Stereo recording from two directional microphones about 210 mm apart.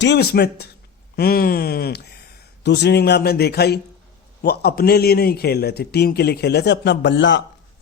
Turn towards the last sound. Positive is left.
turn(degrees=60)  # may be behind; listen again after turning